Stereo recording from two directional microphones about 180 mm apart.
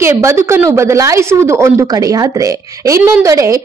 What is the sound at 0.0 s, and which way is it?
A woman's voice, 15° right (ahead or behind).